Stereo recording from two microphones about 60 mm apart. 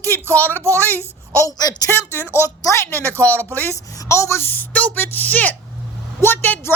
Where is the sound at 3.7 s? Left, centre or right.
Left.